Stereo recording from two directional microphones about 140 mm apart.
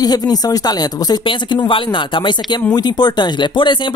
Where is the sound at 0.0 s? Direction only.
25° left (ahead or behind).